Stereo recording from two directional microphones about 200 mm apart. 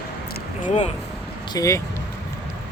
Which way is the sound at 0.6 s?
35° left (ahead or behind).